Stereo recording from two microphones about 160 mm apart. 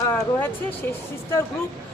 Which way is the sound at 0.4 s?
15° left (ahead or behind).